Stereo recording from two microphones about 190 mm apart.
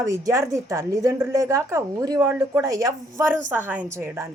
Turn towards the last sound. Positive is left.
turn(degrees=-15)  # may be behind; listen again after turning